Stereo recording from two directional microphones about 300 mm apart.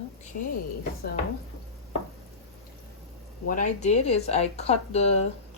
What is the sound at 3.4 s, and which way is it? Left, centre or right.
Speech, left.